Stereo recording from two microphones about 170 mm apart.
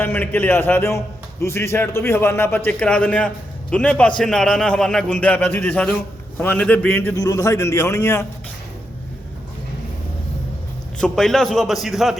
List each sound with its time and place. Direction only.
0.0 s a man's voice: 10° left (ahead or behind)
10.9 s a man's voice: 5° left (ahead or behind)